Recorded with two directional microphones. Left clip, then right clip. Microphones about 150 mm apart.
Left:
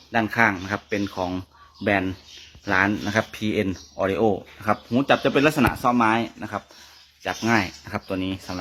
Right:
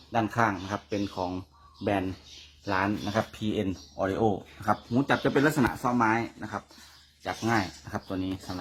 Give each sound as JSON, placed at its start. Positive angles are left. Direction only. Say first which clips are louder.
{"t": 0.1, "sound": "speech", "louder": "left 6 dB", "side_deg": 10}
{"t": 3.9, "sound": "speech", "louder": "left 6 dB", "side_deg": 5}
{"t": 8.0, "sound": "speech", "louder": "left 6 dB", "side_deg": 15}